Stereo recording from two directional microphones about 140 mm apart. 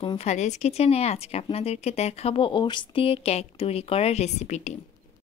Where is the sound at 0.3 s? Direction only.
55° left (ahead or behind).